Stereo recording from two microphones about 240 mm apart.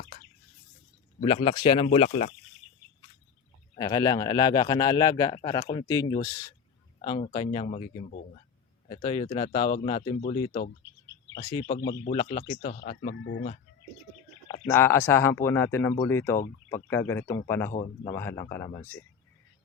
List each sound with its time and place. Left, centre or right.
1.2 s speech: left
3.8 s a man's voice: centre
11.3 s a man's voice: centre
13.1 s speech: left
14.7 s a man's voice: centre